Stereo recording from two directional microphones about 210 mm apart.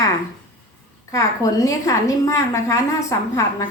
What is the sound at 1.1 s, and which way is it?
A woman's voice, 15° left (ahead or behind).